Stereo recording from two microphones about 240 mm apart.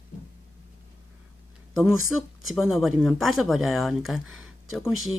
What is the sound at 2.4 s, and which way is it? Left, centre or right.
Speech, centre.